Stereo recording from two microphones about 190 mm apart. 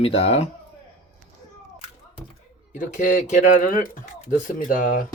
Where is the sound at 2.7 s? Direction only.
45° left (ahead or behind).